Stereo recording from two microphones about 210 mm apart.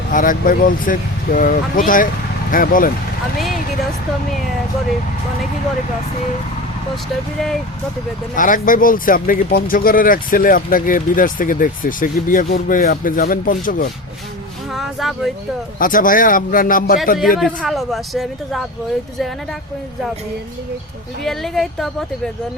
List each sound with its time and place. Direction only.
0.1 s speech: 40° left (ahead or behind)
8.4 s speech: 40° left (ahead or behind)
14.7 s speech: centre (ahead or behind)
15.8 s speech: 40° left (ahead or behind)
17.2 s speech: centre (ahead or behind)
21.2 s speech: centre (ahead or behind)